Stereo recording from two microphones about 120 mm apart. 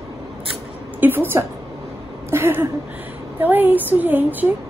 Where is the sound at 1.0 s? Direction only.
15° right (ahead or behind).